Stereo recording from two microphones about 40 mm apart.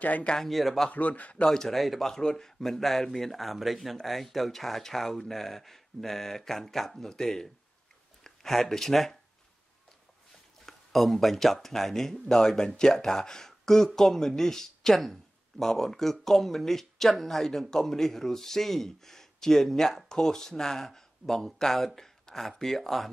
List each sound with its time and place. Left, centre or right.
0.0 s a man's voice: left
0.4 s a man's voice: centre
0.9 s a man's voice: left
1.4 s a man's voice: centre
2.1 s speech: centre
10.6 s speech: centre